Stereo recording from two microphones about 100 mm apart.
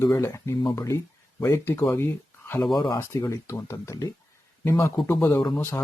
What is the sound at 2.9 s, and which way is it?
Speech, 30° left (ahead or behind).